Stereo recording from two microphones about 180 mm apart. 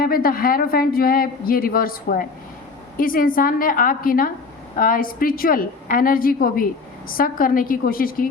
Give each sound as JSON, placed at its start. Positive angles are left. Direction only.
{"t": 0.0, "sound": "a woman's voice", "side_deg": 55}